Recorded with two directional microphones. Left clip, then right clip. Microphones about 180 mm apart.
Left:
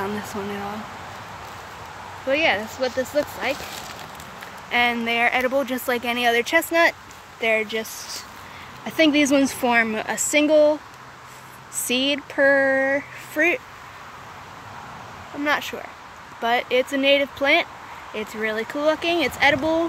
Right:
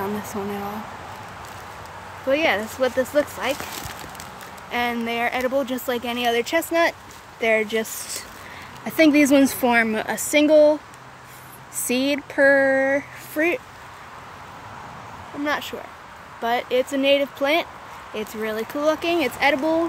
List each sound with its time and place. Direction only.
2.2 s a woman's voice: 20° right (ahead or behind)
4.6 s speech: 5° right (ahead or behind)
7.3 s speech: 30° right (ahead or behind)
8.8 s a woman's voice: 25° right (ahead or behind)
11.9 s speech: 20° right (ahead or behind)
15.4 s speech: 5° right (ahead or behind)